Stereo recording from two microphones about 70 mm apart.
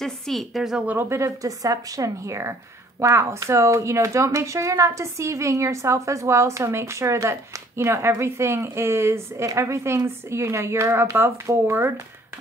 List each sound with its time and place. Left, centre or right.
0.0 s a woman's voice: centre
0.8 s a woman's voice: right
1.4 s a woman's voice: right